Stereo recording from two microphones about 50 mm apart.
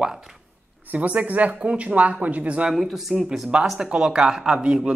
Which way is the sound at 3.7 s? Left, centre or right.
Centre.